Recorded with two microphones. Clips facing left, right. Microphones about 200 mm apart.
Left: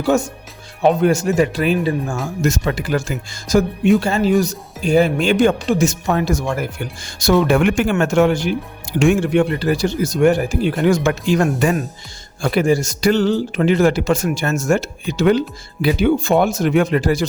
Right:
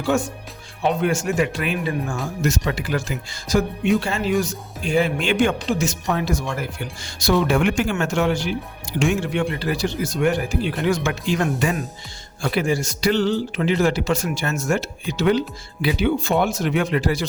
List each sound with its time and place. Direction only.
0.1 s speech: 40° left (ahead or behind)
2.4 s speech: 45° left (ahead or behind)